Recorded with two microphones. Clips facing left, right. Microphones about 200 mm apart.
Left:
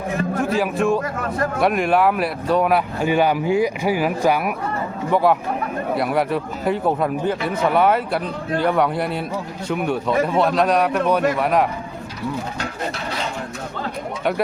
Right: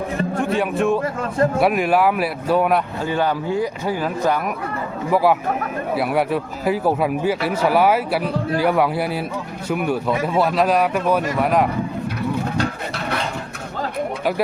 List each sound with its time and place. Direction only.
0.3 s speech: centre (ahead or behind)
1.0 s speech: 25° right (ahead or behind)
1.6 s a man's voice: centre (ahead or behind)
3.0 s speech: 15° left (ahead or behind)
5.1 s a man's voice: 5° right (ahead or behind)